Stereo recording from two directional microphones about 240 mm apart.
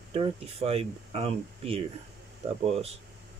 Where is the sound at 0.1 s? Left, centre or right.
Right.